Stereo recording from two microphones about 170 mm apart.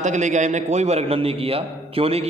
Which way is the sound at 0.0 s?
45° right (ahead or behind).